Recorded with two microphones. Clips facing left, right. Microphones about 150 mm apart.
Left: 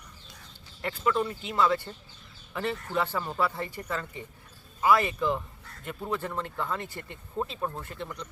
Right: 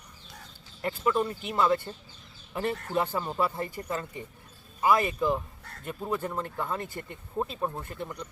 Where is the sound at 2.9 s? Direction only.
20° right (ahead or behind).